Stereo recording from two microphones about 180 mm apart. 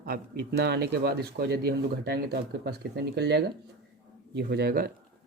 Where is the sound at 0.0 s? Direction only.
55° right (ahead or behind).